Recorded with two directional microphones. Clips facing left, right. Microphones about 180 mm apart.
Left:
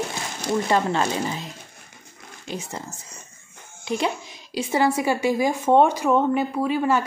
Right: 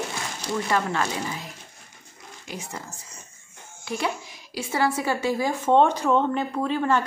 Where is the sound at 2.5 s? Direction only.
25° left (ahead or behind); by 7.0 s 10° left (ahead or behind).